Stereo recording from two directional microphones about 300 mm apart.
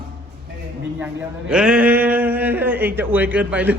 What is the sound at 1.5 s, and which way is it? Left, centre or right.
Speech, centre.